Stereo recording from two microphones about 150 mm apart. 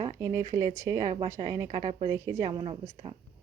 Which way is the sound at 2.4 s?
40° right (ahead or behind).